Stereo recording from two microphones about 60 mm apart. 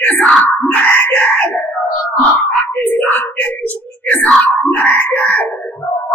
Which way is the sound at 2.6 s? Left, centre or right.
Left.